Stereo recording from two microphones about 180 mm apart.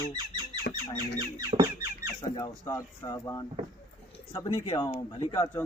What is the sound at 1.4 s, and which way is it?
Squeak, 25° right (ahead or behind).